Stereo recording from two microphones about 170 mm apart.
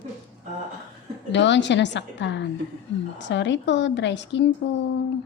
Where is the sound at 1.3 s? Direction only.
90° left.